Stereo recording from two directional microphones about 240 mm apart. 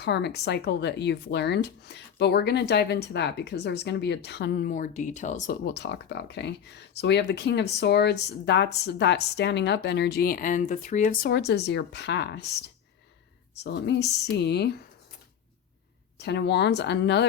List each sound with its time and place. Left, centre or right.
0.0 s speech: left
16.1 s speech: left